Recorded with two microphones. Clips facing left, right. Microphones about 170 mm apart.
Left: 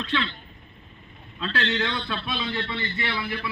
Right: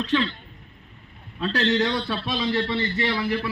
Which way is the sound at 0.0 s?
40° right (ahead or behind).